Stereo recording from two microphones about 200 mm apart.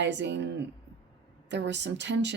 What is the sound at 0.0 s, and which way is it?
Speech, 60° right (ahead or behind).